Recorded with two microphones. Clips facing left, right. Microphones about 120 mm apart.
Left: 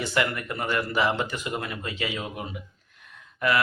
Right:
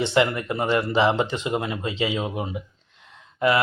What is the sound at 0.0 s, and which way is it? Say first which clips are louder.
Speech: right 6 dB; 25° right (ahead or behind).